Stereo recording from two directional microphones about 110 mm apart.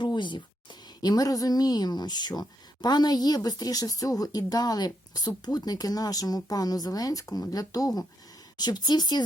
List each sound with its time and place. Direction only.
0.0 s a woman's voice: 45° left (ahead or behind)